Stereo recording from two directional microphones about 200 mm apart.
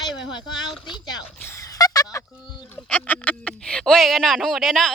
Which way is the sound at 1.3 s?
10° left (ahead or behind).